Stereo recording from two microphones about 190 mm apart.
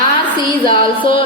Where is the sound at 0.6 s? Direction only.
25° left (ahead or behind).